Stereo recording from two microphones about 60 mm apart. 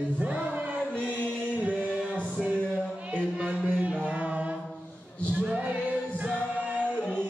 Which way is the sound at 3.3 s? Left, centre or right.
Right.